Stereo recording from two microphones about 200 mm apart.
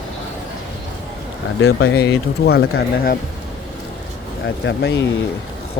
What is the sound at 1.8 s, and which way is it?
Speech, 55° left (ahead or behind).